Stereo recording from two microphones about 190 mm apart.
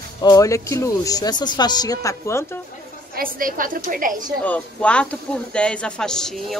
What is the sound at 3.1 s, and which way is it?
A woman's voice, 50° right (ahead or behind).